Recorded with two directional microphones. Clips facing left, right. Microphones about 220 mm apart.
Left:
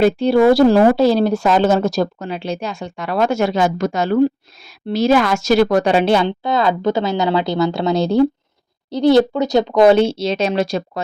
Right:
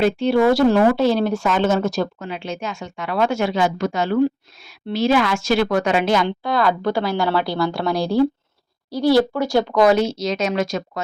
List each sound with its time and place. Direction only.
0.0 s speech: 35° left (ahead or behind)